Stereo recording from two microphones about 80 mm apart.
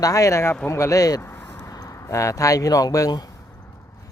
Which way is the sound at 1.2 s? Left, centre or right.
Left.